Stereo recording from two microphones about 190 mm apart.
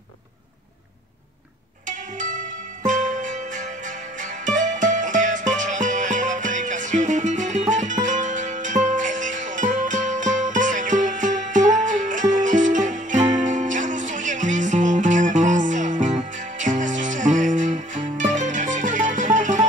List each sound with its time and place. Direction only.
1.9 s music: 40° right (ahead or behind)